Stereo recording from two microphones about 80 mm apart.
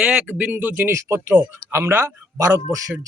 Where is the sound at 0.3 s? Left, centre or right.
Right.